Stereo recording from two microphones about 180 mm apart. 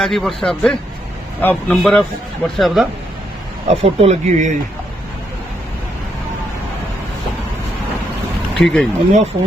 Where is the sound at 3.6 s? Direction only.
35° right (ahead or behind).